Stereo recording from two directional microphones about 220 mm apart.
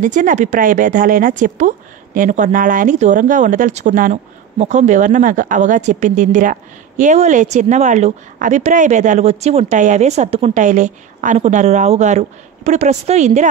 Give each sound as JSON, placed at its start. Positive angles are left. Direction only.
{"t": 0.0, "sound": "speech", "side_deg": -35}